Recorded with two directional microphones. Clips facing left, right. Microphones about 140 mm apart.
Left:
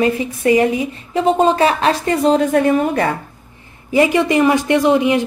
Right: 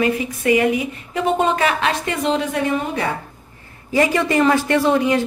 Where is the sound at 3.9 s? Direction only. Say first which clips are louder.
Left 3 dB; 20° left (ahead or behind).